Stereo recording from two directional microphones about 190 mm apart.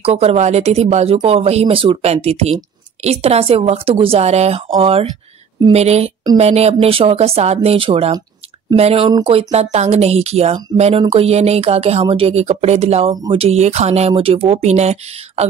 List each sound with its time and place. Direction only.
0.0 s speech: 30° right (ahead or behind)